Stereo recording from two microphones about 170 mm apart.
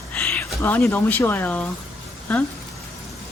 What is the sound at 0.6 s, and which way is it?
Speech, 15° left (ahead or behind).